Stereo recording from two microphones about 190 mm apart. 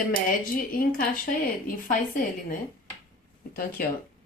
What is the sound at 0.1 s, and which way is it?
Speech, 50° left (ahead or behind).